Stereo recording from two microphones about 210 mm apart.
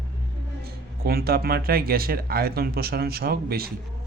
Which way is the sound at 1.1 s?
45° right (ahead or behind).